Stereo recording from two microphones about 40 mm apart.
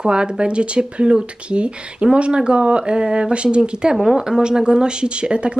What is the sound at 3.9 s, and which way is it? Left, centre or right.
Speech, centre.